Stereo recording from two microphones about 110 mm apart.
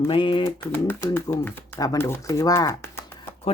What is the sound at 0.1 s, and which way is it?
Speech, 50° left (ahead or behind).